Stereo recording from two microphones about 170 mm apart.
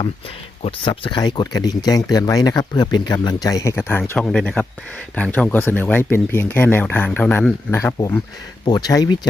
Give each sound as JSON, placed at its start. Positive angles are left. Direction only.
{"t": 0.6, "sound": "speech", "side_deg": 30}